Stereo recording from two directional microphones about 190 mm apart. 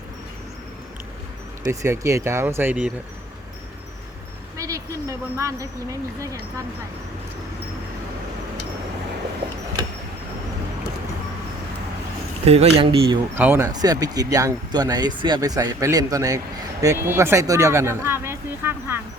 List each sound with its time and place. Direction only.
1.6 s speech: 15° right (ahead or behind)
4.5 s a woman's voice: 15° right (ahead or behind)
12.5 s speech: 35° right (ahead or behind)
13.3 s speech: 10° right (ahead or behind)